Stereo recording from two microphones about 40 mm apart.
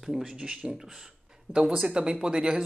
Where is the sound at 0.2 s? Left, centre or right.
Centre.